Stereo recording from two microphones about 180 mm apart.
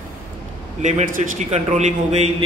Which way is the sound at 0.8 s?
40° right (ahead or behind).